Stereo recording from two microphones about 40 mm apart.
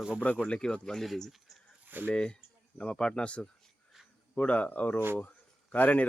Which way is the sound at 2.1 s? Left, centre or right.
Left.